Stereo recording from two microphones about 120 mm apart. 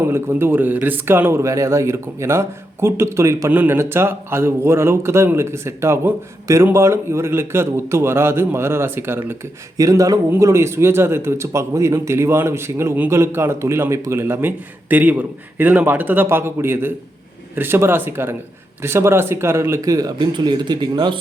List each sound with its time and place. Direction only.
0.0 s speech: 20° right (ahead or behind)
9.7 s speech: 30° right (ahead or behind)